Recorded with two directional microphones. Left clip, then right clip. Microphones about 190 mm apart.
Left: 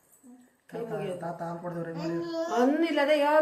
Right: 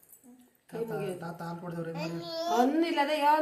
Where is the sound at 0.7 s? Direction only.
30° right (ahead or behind).